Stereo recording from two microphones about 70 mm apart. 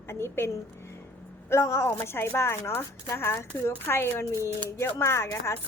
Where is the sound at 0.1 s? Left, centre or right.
Left.